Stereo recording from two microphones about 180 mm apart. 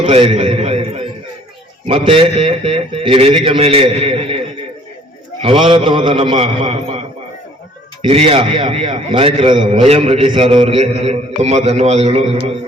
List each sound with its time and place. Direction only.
0.0 s a man's voice: 30° right (ahead or behind)
5.4 s a man's voice: 30° right (ahead or behind)
8.0 s a man's voice: 30° right (ahead or behind)